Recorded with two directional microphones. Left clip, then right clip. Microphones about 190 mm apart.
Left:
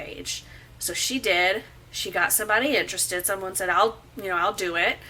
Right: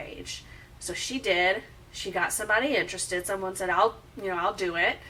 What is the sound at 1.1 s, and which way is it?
A woman's voice, 5° left (ahead or behind).